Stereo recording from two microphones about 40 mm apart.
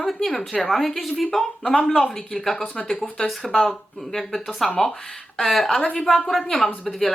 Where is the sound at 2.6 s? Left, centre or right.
Left.